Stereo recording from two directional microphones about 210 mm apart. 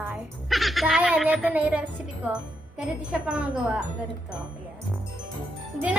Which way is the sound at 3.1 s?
5° right (ahead or behind).